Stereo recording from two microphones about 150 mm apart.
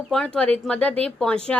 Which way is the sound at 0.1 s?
5° left (ahead or behind).